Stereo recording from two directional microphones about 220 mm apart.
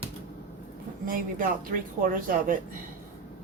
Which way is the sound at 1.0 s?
40° right (ahead or behind).